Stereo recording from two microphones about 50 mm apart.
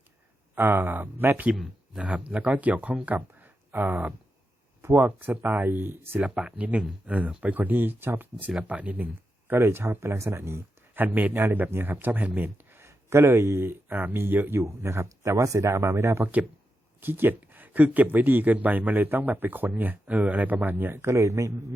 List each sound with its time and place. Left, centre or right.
0.5 s speech: right
2.0 s speech: right
6.1 s speech: right
8.6 s speech: right
9.5 s speech: right
10.9 s speech: right
12.7 s speech: right
13.8 s speech: right
14.8 s speech: right
17.0 s speech: right
21.2 s speech: right